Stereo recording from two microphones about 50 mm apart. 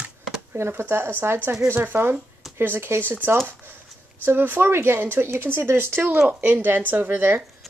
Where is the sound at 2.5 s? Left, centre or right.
Right.